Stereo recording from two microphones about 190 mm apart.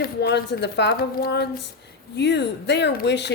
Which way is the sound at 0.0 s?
60° left (ahead or behind).